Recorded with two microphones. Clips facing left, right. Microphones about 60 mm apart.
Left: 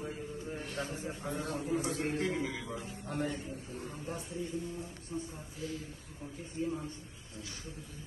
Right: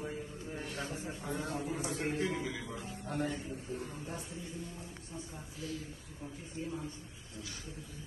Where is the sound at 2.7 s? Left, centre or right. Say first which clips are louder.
Left 1 dB; left.